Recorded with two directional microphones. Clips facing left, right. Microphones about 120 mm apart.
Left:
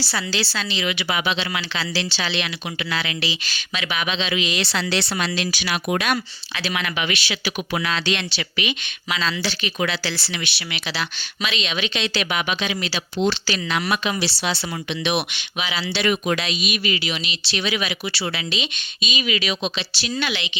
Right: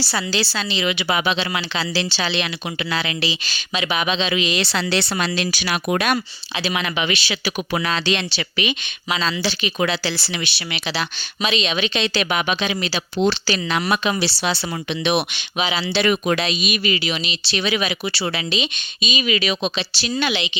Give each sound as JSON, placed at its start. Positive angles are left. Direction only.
{"t": 0.0, "sound": "speech", "side_deg": -40}
{"t": 0.5, "sound": "speech", "side_deg": -25}
{"t": 1.2, "sound": "speech", "side_deg": -40}
{"t": 1.7, "sound": "speech", "side_deg": -25}
{"t": 6.6, "sound": "speech", "side_deg": -25}
{"t": 16.0, "sound": "speech", "side_deg": -45}
{"t": 16.4, "sound": "speech", "side_deg": -30}
{"t": 18.2, "sound": "speech", "side_deg": -30}